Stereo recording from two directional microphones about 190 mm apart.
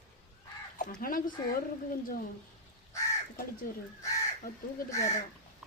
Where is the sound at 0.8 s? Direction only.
45° left (ahead or behind).